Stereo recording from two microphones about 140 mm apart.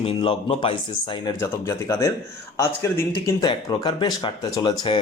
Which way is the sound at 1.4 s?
20° left (ahead or behind).